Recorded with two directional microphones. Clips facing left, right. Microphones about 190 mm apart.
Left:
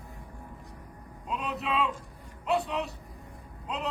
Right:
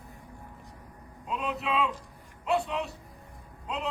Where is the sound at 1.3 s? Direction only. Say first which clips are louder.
Right 1 dB; centre (ahead or behind).